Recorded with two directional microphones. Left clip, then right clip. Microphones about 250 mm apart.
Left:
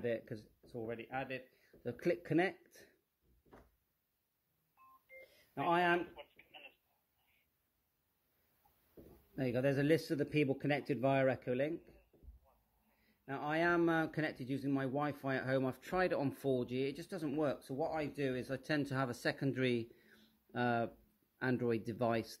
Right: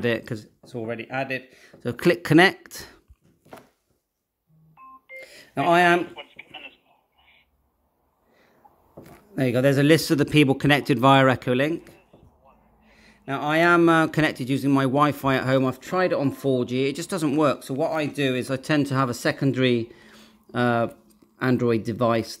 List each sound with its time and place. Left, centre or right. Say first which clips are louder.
0.0 s speech: right 14 dB; centre
5.0 s telephone dialing: right 16 dB; centre
9.3 s speech: right 15 dB; centre
13.0 s speech: right 15 dB; centre